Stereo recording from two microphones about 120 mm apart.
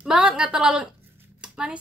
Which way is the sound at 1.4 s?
10° right (ahead or behind).